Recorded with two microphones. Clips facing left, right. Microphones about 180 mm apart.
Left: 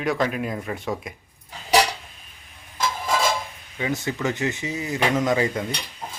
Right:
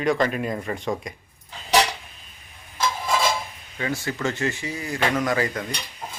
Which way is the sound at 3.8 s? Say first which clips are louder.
Left 1 dB; 20° left (ahead or behind).